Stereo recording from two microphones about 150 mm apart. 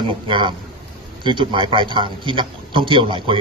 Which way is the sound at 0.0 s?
30° right (ahead or behind).